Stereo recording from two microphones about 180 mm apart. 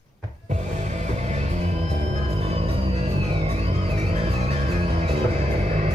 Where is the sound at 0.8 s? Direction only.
40° right (ahead or behind).